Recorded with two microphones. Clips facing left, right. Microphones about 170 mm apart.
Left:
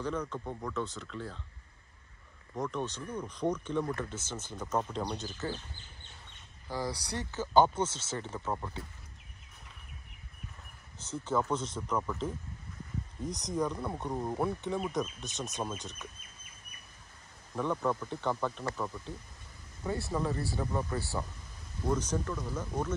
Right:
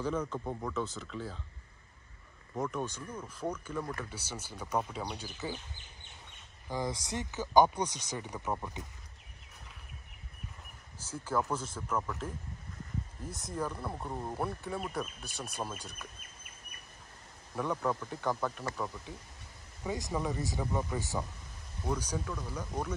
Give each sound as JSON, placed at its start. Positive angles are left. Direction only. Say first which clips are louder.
{"t": 0.0, "sound": "speech", "louder": "right 1 dB", "side_deg": -5}
{"t": 2.5, "sound": "speech", "louder": "even", "side_deg": -5}
{"t": 11.0, "sound": "speech", "louder": "left 2 dB", "side_deg": -10}
{"t": 17.6, "sound": "speech", "louder": "left 1 dB", "side_deg": -10}